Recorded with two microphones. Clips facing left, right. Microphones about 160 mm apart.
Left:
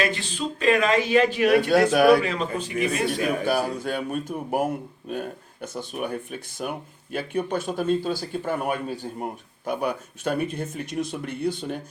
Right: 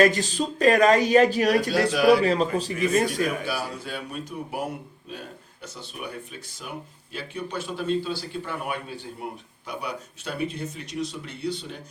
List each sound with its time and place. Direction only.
0.0 s a man's voice: 40° right (ahead or behind)
1.7 s speech: 55° left (ahead or behind)
2.2 s a man's voice: 35° right (ahead or behind)
3.4 s speech: 50° left (ahead or behind)